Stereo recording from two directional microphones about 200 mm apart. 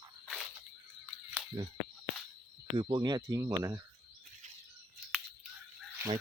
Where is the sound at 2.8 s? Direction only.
25° right (ahead or behind).